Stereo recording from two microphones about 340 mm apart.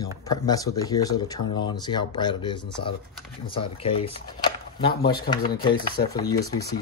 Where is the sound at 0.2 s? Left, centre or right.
Centre.